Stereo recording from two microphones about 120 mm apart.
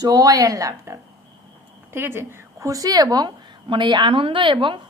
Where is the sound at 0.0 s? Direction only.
30° right (ahead or behind).